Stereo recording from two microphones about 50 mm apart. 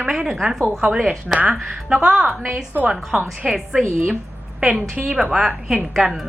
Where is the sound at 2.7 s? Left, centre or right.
Right.